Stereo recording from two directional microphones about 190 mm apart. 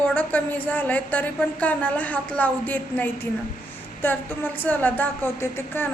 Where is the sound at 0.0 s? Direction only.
5° left (ahead or behind).